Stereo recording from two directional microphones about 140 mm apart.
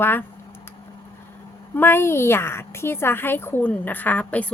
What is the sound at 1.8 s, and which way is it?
Speech, 15° left (ahead or behind).